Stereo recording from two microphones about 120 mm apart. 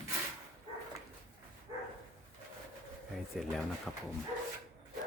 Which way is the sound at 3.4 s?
Centre (ahead or behind).